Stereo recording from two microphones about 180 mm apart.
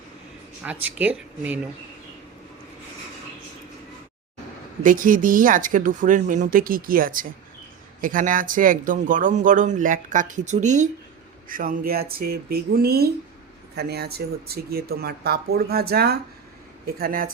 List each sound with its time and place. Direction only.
0.6 s speech: 10° right (ahead or behind)
4.8 s speech: 50° right (ahead or behind)